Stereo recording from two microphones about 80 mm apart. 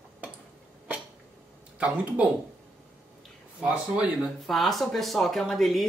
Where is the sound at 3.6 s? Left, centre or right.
Centre.